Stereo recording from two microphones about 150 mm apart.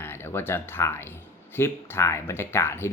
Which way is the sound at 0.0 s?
15° left (ahead or behind).